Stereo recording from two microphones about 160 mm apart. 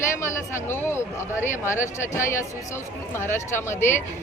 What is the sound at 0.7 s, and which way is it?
Speech, 15° left (ahead or behind).